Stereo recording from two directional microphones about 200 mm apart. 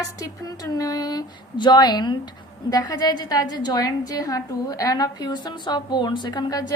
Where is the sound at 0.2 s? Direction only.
20° left (ahead or behind).